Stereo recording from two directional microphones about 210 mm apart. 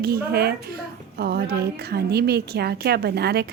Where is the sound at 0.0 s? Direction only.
45° right (ahead or behind).